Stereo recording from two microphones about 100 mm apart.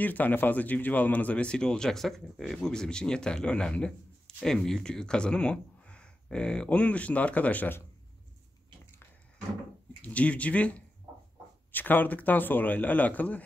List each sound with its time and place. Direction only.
0.0 s speech: 15° left (ahead or behind)
10.0 s speech: 15° left (ahead or behind)